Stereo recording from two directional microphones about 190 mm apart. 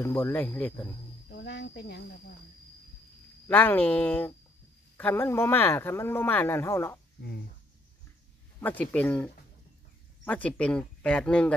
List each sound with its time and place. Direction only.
0.0 s speech: 15° left (ahead or behind)
1.3 s speech: 60° left (ahead or behind)
3.4 s speech: 10° left (ahead or behind)
8.5 s speech: 10° left (ahead or behind)